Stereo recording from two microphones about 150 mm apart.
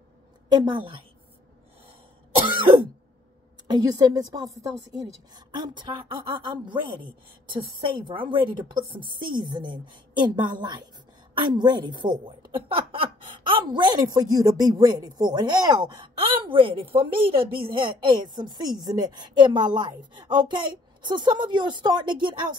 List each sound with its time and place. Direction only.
0.5 s a woman's voice: 30° right (ahead or behind)
2.4 s throat clearing: 30° right (ahead or behind)
3.6 s a woman's voice: 25° right (ahead or behind)
8.1 s a woman's voice: 35° right (ahead or behind)